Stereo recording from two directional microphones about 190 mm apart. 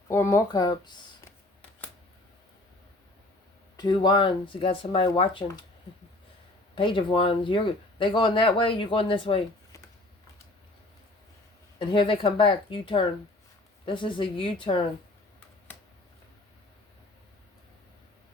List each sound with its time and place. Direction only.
0.1 s speech: 15° left (ahead or behind)
3.8 s speech: 20° left (ahead or behind)
6.7 s speech: 25° left (ahead or behind)
11.8 s speech: 25° left (ahead or behind)